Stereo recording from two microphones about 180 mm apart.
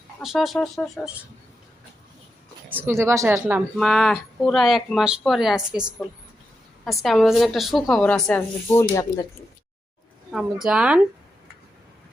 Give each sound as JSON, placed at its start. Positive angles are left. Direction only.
{"t": 0.2, "sound": "speech", "side_deg": 0}
{"t": 2.6, "sound": "speech", "side_deg": -10}
{"t": 3.8, "sound": "speech", "side_deg": 0}
{"t": 6.8, "sound": "speech", "side_deg": 0}
{"t": 10.3, "sound": "speech", "side_deg": -5}